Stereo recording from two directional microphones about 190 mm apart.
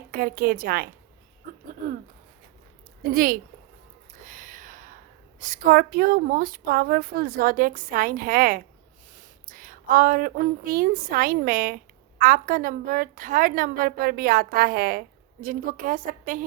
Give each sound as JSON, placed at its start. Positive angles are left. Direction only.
{"t": 0.1, "sound": "a woman's voice", "side_deg": -50}
{"t": 3.1, "sound": "a woman's voice", "side_deg": -50}
{"t": 4.2, "sound": "a sound", "side_deg": -45}
{"t": 5.4, "sound": "a woman's voice", "side_deg": -45}